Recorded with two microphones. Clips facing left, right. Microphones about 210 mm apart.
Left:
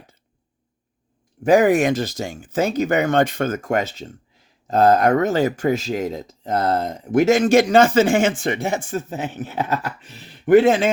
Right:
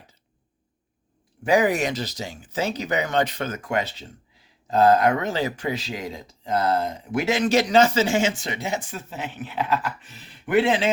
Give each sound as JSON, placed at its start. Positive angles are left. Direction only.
{"t": 1.5, "sound": "speech", "side_deg": 50}